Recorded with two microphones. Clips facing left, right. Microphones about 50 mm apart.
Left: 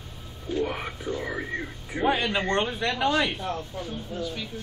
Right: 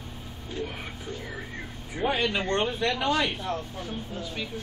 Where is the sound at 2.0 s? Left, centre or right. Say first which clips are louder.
Left 2 dB; centre.